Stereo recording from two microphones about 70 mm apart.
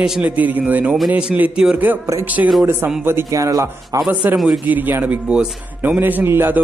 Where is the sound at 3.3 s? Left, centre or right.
Right.